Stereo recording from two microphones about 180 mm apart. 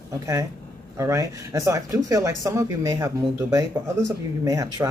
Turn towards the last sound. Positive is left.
turn(degrees=-20)  # may be behind; listen again after turning